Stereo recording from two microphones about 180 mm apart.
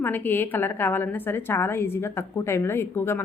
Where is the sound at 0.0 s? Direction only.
10° left (ahead or behind).